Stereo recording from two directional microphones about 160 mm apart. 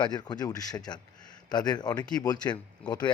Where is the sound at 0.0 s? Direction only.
25° left (ahead or behind).